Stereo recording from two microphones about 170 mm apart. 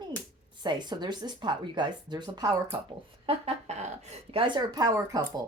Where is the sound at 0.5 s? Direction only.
25° right (ahead or behind).